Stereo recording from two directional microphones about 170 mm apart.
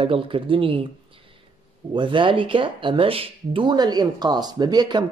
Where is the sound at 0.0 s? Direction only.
30° right (ahead or behind).